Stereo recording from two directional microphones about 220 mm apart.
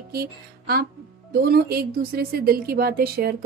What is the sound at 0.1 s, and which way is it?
A woman's voice, 45° right (ahead or behind).